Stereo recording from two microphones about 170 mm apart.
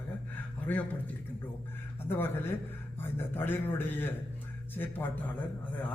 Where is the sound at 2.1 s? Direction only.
15° left (ahead or behind).